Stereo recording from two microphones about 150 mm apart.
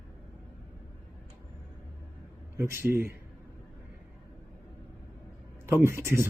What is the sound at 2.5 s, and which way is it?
Speech, 15° right (ahead or behind).